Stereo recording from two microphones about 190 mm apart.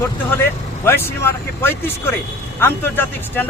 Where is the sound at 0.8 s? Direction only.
15° left (ahead or behind).